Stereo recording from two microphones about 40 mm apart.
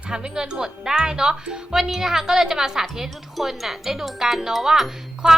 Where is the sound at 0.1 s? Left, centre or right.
Centre.